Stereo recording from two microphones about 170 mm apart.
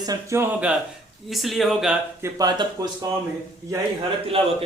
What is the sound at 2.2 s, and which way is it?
Speech, 20° right (ahead or behind).